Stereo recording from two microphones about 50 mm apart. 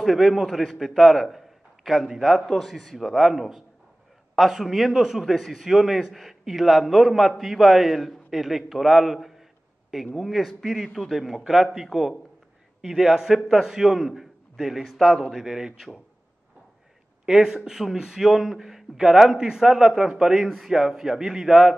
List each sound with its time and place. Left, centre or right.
0.0 s a man's voice: centre
15.3 s speech: centre
17.3 s speech: centre
20.4 s a man's voice: centre
20.7 s speech: centre